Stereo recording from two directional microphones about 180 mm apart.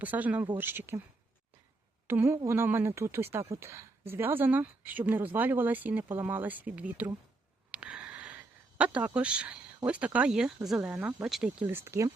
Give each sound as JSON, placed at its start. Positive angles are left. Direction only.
{"t": 0.0, "sound": "speech", "side_deg": -10}
{"t": 2.0, "sound": "speech", "side_deg": -15}